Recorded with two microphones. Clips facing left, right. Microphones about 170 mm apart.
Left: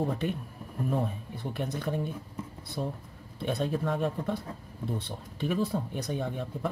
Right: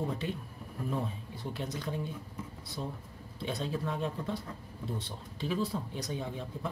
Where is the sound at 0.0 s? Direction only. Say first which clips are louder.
Left 5 dB; 55° left (ahead or behind).